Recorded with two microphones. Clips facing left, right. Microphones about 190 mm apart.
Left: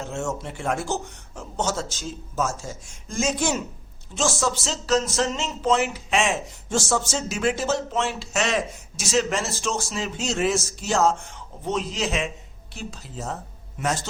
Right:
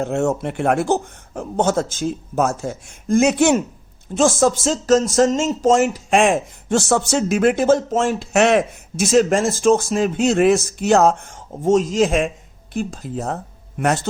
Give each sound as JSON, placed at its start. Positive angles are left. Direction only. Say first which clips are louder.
{"t": 0.0, "sound": "speech", "louder": "right 9 dB", "side_deg": -60}
{"t": 4.1, "sound": "speech", "louder": "right 9 dB", "side_deg": -55}